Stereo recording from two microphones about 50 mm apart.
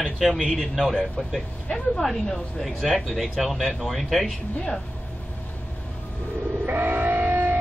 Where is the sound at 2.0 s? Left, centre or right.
Centre.